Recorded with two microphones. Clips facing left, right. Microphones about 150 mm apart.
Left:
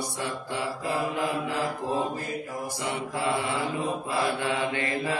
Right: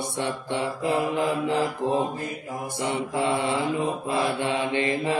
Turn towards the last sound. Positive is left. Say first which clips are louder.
# right 4 dB
turn(degrees=-25)  # may be behind; listen again after turning